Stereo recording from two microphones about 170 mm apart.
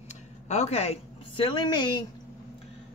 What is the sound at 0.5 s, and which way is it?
Speech, 40° left (ahead or behind).